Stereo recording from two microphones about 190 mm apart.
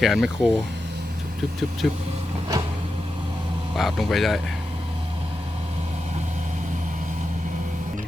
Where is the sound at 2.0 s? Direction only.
35° right (ahead or behind).